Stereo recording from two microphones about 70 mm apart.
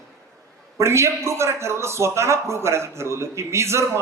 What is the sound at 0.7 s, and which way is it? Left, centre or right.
A man's voice, right.